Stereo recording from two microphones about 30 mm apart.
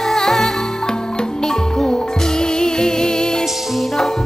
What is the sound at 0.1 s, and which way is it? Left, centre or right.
Music, centre.